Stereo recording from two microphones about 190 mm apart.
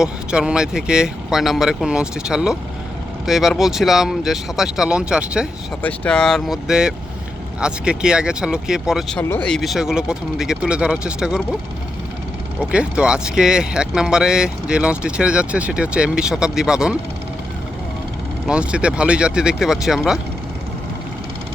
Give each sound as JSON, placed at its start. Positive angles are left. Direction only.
{"t": 0.0, "sound": "speech", "side_deg": -5}
{"t": 12.7, "sound": "speech", "side_deg": -5}
{"t": 18.4, "sound": "speech", "side_deg": -5}